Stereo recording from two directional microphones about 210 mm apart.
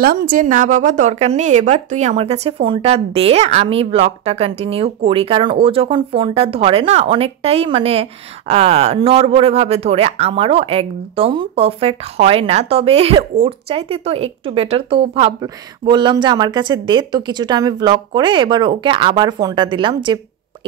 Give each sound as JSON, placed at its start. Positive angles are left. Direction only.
{"t": 0.0, "sound": "a woman's voice", "side_deg": -45}